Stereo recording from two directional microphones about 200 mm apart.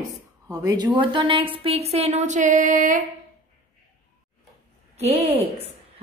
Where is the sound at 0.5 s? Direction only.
20° right (ahead or behind); by 3.1 s 40° right (ahead or behind).